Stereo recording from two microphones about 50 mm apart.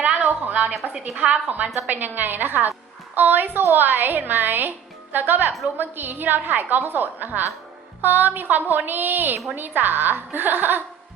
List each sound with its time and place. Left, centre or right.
0.3 s a woman's voice: right
1.0 s a woman's voice: right